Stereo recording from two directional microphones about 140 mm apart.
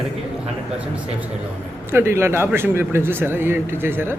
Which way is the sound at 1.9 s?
15° right (ahead or behind).